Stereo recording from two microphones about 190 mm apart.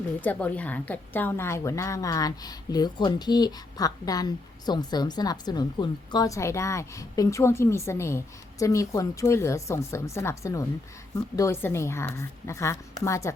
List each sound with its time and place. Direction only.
0.2 s a woman's voice: 10° left (ahead or behind)